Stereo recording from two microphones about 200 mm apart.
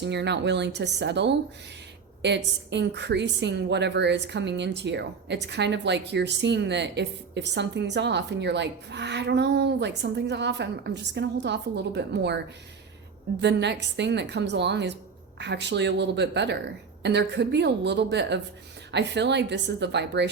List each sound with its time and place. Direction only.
0.0 s a woman's voice: 60° right (ahead or behind)
13.4 s a woman's voice: 60° right (ahead or behind)